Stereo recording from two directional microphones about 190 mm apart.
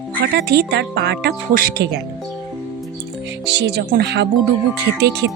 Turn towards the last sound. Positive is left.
turn(degrees=-60)  # may be behind; listen again after turning